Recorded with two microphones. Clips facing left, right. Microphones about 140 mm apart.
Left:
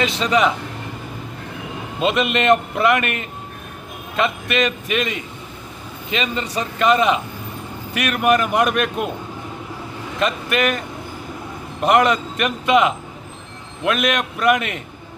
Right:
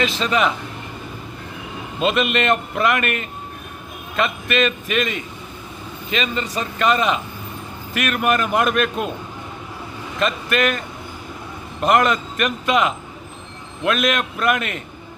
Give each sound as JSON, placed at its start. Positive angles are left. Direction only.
{"t": 0.2, "sound": "a man's voice", "side_deg": 20}
{"t": 2.0, "sound": "a man's voice", "side_deg": 20}
{"t": 10.2, "sound": "a man's voice", "side_deg": 15}
{"t": 11.8, "sound": "a man's voice", "side_deg": 15}